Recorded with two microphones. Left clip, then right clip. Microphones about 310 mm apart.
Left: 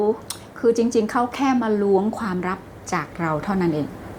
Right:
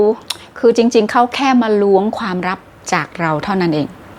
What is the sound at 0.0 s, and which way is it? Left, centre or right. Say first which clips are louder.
A woman's voice: right 8 dB; right.